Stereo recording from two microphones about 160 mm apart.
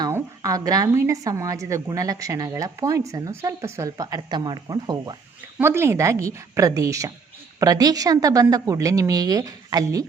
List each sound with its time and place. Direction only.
0.0 s a woman's voice: 20° right (ahead or behind)
5.5 s a woman's voice: 15° right (ahead or behind)